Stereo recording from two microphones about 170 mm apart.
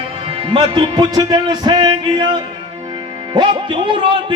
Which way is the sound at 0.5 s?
25° right (ahead or behind).